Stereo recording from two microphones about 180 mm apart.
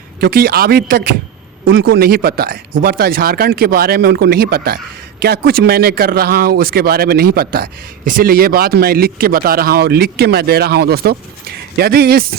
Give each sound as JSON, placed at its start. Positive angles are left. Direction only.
{"t": 0.2, "sound": "a man's voice", "side_deg": -55}